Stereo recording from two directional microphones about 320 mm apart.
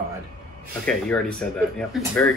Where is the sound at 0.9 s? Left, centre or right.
Centre.